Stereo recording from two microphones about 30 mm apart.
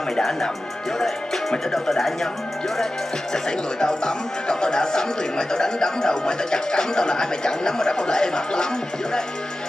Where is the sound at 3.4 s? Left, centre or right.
Left.